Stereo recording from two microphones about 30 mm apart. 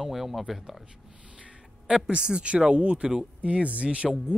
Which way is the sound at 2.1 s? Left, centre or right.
Right.